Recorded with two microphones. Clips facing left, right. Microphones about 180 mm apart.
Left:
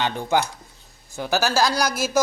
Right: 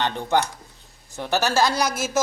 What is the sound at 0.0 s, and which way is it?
Speech, 5° left (ahead or behind).